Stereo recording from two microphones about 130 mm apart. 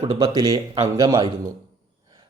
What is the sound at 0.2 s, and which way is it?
A man's voice, 30° right (ahead or behind).